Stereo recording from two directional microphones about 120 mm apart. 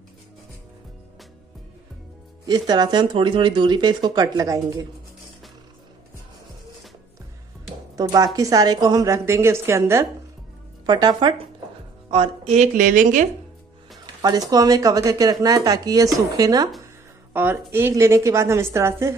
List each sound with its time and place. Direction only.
2.4 s speech: 35° right (ahead or behind)
7.9 s a woman's voice: 30° right (ahead or behind)
10.9 s speech: 40° right (ahead or behind)
12.5 s a woman's voice: 90° right
14.2 s speech: 35° right (ahead or behind)
17.3 s a woman's voice: 20° right (ahead or behind)